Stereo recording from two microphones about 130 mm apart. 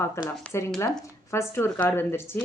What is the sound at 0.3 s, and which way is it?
Speech, 20° left (ahead or behind).